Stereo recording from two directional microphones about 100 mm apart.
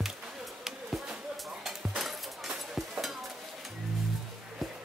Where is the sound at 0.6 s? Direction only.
5° right (ahead or behind).